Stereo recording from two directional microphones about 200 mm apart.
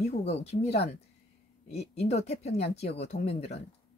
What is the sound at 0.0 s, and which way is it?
Speech, 35° left (ahead or behind).